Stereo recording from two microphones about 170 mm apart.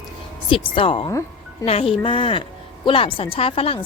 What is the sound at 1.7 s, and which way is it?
A woman's voice, 35° left (ahead or behind).